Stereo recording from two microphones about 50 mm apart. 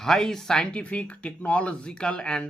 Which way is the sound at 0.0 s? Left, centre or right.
Centre.